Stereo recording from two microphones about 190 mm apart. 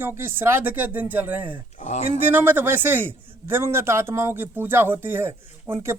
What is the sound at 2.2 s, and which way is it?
Speech, 10° right (ahead or behind).